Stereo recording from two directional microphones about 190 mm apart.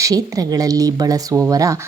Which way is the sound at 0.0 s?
20° right (ahead or behind).